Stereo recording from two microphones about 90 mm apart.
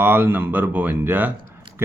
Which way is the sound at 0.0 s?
25° right (ahead or behind).